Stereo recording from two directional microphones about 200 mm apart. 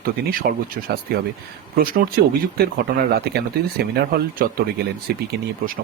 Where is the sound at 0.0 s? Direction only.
45° right (ahead or behind).